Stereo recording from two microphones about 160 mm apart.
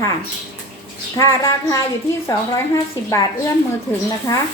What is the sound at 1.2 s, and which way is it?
Speech, 20° left (ahead or behind).